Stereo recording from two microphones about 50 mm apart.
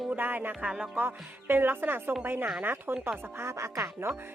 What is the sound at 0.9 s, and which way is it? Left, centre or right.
Speech, right.